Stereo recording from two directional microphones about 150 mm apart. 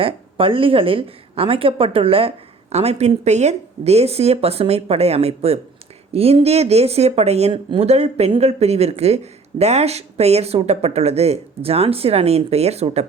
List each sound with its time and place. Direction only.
0.0 s a woman's voice: 35° right (ahead or behind)